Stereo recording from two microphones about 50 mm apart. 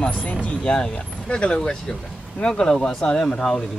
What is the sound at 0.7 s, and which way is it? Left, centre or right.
Speech, left.